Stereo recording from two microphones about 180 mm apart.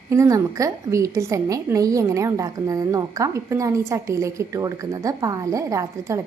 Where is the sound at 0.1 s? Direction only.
15° right (ahead or behind).